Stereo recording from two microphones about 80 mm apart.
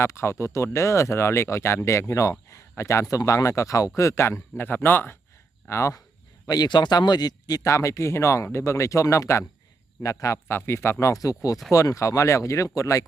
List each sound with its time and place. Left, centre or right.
0.0 s speech: left
6.5 s speech: left
7.7 s a man's voice: left
10.5 s speech: left